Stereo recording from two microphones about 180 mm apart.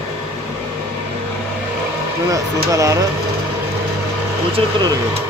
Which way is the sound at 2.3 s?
20° right (ahead or behind).